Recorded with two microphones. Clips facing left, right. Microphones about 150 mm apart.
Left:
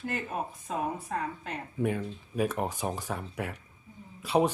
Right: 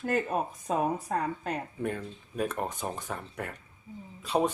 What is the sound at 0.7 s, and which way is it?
Speech, 45° right (ahead or behind).